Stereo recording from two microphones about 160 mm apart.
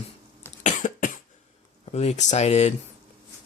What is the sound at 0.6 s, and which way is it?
Cough, 55° left (ahead or behind).